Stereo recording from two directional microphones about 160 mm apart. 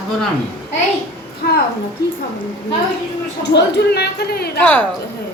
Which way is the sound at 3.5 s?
90° left.